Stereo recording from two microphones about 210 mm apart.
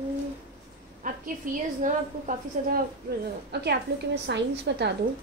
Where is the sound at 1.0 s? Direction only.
40° right (ahead or behind).